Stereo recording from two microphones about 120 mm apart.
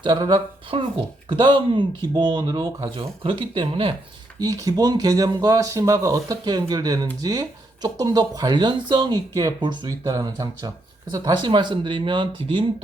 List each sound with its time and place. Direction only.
0.0 s speech: 40° right (ahead or behind)
4.4 s speech: 30° right (ahead or behind)